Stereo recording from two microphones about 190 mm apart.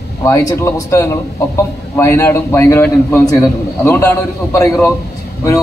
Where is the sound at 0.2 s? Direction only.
20° left (ahead or behind).